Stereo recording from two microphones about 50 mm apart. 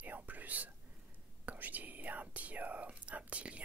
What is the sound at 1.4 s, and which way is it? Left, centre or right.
Speech, right.